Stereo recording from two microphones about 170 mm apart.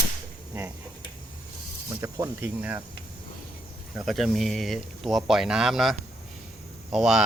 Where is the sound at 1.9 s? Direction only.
15° right (ahead or behind).